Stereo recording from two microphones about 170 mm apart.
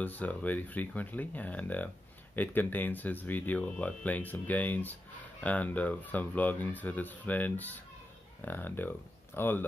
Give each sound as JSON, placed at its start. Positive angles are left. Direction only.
{"t": 0.0, "sound": "speech", "side_deg": 10}